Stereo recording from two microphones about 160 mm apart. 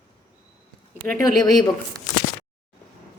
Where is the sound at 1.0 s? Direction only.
15° left (ahead or behind).